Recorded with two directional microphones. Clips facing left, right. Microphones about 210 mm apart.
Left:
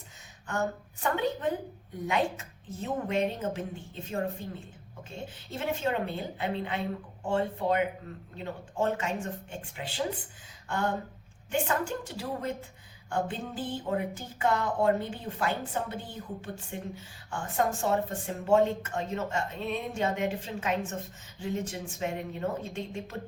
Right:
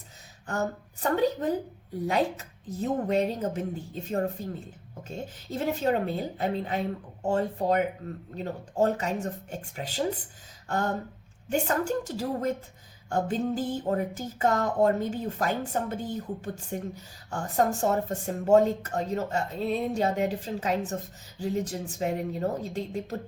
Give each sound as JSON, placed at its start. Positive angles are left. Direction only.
{"t": 1.0, "sound": "speech", "side_deg": -40}